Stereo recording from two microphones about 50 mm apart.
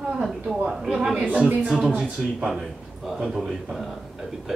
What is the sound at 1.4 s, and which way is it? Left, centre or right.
Speech, right.